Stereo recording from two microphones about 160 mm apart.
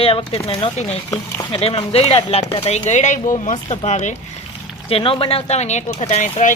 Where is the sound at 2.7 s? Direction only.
45° left (ahead or behind).